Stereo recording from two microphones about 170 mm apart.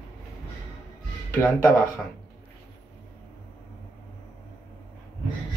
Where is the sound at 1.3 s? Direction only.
10° left (ahead or behind).